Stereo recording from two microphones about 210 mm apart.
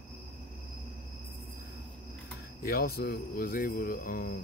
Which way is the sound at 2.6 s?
45° left (ahead or behind).